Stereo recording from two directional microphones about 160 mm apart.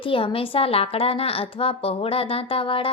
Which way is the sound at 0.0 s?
35° left (ahead or behind).